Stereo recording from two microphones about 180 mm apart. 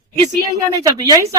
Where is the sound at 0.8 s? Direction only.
20° right (ahead or behind).